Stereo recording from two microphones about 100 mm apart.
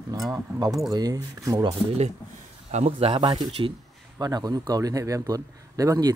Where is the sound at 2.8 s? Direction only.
90° right.